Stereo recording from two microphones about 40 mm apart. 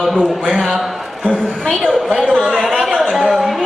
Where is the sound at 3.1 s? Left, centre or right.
Centre.